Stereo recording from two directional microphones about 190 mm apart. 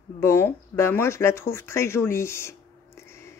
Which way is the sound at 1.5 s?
15° left (ahead or behind).